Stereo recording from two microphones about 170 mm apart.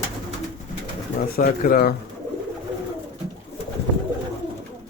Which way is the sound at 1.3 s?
55° left (ahead or behind).